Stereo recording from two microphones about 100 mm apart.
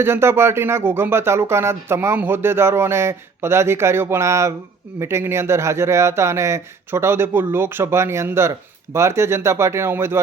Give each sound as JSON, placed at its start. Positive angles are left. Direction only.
{"t": 0.0, "sound": "speech", "side_deg": -25}